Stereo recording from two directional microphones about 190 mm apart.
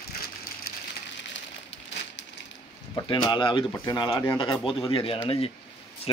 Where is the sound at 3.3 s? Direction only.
25° left (ahead or behind).